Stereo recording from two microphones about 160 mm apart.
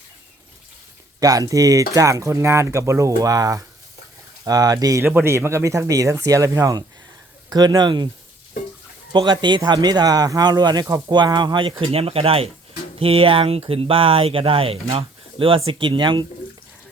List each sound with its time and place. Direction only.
1.2 s speech: 20° right (ahead or behind)
9.1 s speech: 30° right (ahead or behind)